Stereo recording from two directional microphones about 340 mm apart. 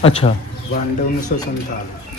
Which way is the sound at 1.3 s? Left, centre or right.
Left.